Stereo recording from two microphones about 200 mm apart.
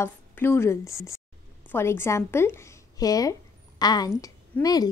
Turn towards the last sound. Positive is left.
turn(degrees=15)  # may be behind; listen again after turning